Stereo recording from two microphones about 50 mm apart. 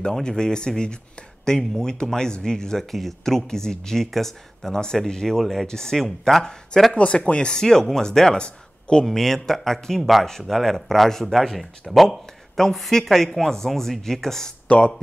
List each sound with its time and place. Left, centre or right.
0.0 s speech: centre
7.0 s speech: left; by 14.5 s centre
14.7 s speech: left